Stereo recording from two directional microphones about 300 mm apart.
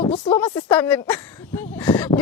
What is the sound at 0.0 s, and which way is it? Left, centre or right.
A woman's voice, centre.